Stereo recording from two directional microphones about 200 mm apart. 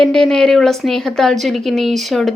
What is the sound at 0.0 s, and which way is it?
A woman's voice, 5° left (ahead or behind).